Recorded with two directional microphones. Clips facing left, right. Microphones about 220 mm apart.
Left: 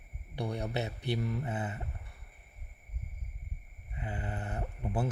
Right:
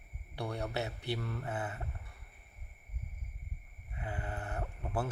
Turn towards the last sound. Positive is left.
turn(degrees=20)  # may be behind; listen again after turning